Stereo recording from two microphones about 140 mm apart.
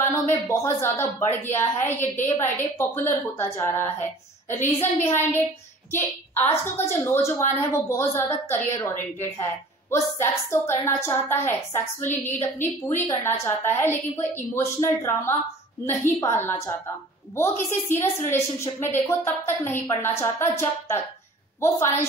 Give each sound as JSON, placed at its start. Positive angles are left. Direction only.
{"t": 0.0, "sound": "a woman's voice", "side_deg": 20}